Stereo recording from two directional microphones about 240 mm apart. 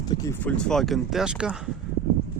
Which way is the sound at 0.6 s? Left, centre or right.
Centre.